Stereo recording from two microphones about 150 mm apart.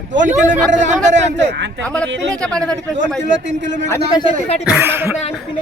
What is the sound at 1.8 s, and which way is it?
Speech, 5° left (ahead or behind).